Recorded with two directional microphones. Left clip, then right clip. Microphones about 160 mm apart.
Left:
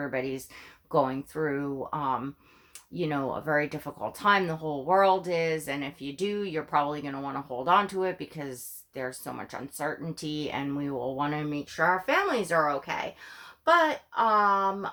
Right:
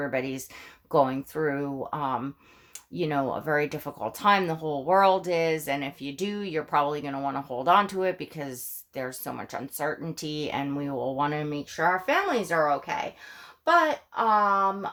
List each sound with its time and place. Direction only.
0.0 s speech: 35° right (ahead or behind)